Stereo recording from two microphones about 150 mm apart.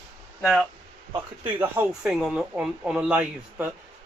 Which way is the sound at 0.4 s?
Centre (ahead or behind).